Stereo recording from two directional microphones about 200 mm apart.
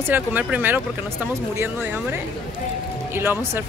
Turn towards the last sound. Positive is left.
turn(degrees=-10)  # may be behind; listen again after turning